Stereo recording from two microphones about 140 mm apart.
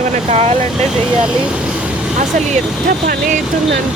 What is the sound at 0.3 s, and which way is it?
Speech, 50° right (ahead or behind).